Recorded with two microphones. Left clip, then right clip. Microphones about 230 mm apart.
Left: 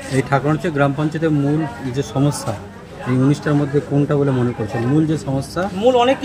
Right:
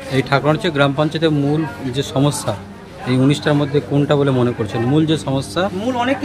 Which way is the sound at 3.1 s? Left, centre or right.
Centre.